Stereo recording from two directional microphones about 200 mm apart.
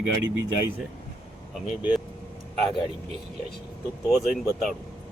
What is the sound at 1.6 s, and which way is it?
Speech, centre (ahead or behind).